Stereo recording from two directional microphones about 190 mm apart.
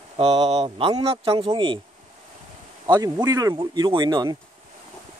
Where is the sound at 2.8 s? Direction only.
20° right (ahead or behind).